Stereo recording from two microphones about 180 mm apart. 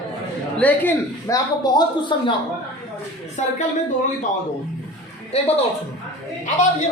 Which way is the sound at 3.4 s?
40° left (ahead or behind).